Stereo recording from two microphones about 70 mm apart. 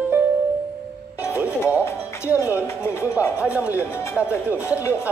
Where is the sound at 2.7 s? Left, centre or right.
Left.